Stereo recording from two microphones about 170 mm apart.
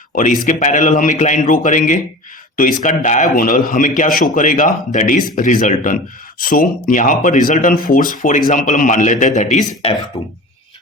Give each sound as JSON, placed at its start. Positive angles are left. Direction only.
{"t": 0.1, "sound": "speech", "side_deg": 50}